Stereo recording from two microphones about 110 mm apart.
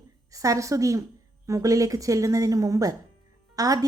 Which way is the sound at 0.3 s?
30° right (ahead or behind).